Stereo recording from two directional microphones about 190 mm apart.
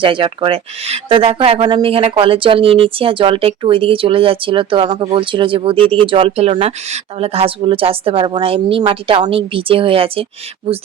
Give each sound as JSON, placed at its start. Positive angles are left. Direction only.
{"t": 0.0, "sound": "speech", "side_deg": -25}